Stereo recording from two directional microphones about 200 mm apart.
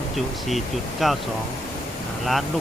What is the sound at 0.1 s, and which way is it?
Speech, centre (ahead or behind).